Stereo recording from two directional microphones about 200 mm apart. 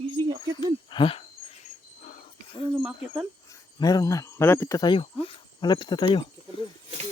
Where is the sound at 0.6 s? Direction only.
25° left (ahead or behind).